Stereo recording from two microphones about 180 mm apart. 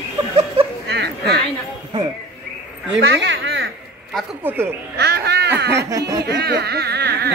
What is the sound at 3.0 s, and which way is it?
Speech, 85° right.